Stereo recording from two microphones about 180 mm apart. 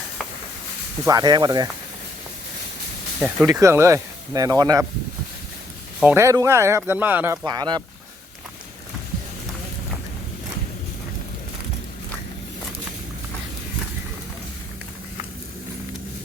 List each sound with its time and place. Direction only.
1.0 s speech: 25° right (ahead or behind)
3.2 s speech: 5° right (ahead or behind)
3.4 s speech: 15° right (ahead or behind)
6.0 s speech: 10° right (ahead or behind)
7.4 s speech: 25° right (ahead or behind)